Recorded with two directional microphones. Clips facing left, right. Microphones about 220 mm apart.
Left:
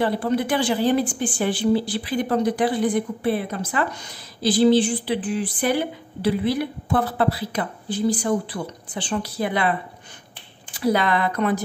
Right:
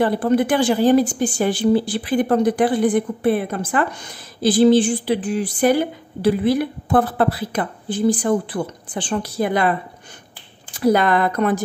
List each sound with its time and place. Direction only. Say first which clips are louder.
0.0 s speech: right 5 dB; 50° right (ahead or behind)